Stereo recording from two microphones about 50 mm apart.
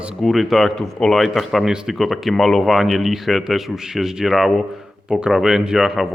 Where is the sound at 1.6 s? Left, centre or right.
Centre.